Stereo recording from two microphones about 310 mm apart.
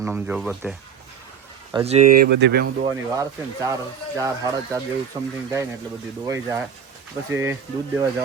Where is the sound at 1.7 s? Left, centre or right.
Centre; by 2.7 s right.